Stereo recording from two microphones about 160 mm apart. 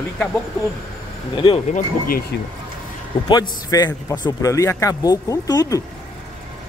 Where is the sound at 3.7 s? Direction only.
25° left (ahead or behind).